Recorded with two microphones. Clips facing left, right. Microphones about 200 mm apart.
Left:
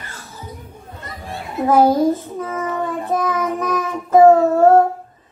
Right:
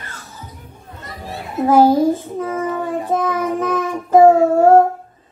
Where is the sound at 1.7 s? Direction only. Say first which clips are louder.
Right 2 dB; 30° right (ahead or behind).